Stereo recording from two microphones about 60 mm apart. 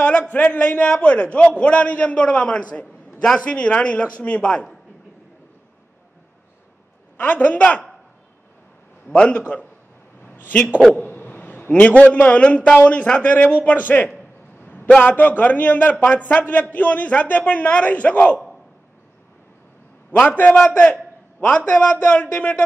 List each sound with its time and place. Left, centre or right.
0.0 s a man's voice: left
7.2 s a man's voice: left
9.0 s a man's voice: centre
10.2 s a sound: left
11.0 s a man's voice: left
14.6 s a sound: left
15.0 s a man's voice: left
20.1 s a man's voice: left